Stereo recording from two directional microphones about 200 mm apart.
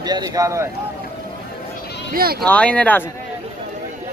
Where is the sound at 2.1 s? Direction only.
50° right (ahead or behind).